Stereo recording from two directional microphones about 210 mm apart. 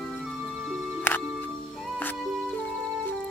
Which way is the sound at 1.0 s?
10° left (ahead or behind).